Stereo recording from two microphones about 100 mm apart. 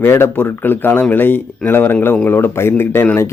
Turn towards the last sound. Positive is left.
turn(degrees=20)  # may be behind; listen again after turning